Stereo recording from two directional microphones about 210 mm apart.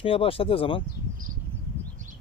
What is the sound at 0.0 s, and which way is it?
Speech, 25° left (ahead or behind).